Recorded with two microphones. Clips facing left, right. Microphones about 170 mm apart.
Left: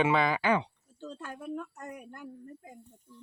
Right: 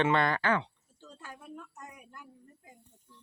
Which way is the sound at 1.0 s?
65° left (ahead or behind).